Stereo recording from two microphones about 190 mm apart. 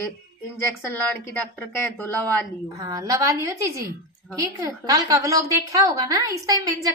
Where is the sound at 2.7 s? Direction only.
20° right (ahead or behind).